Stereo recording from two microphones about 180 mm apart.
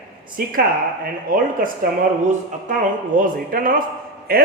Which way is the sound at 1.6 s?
50° right (ahead or behind).